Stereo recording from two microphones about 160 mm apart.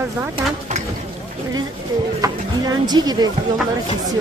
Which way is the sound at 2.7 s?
25° right (ahead or behind).